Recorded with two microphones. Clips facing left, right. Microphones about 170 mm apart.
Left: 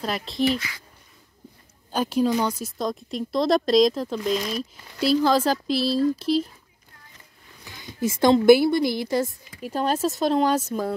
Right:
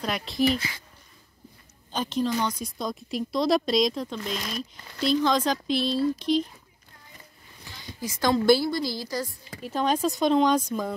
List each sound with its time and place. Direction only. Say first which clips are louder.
0.0 s speech: left 1 dB; centre (ahead or behind)
0.6 s a child's voice: right 1 dB; 25° right (ahead or behind)
1.9 s speech: left 5 dB; 10° left (ahead or behind)
7.7 s speech: left 9 dB; 25° left (ahead or behind)
9.6 s speech: left 1 dB; 10° left (ahead or behind)